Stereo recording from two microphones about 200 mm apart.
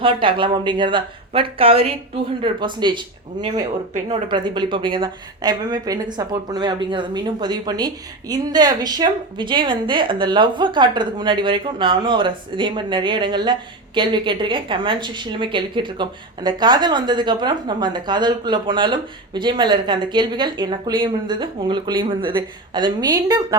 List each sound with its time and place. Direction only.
0.0 s a woman's voice: 25° right (ahead or behind)